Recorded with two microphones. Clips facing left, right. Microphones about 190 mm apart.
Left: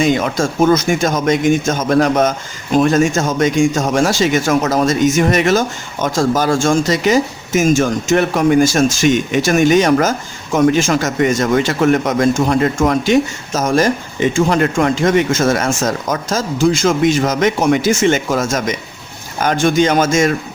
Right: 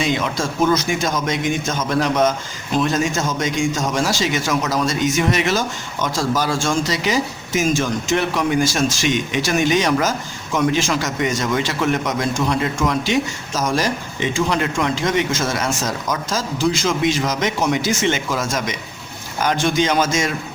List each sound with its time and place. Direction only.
0.0 s a man's voice: 50° left (ahead or behind)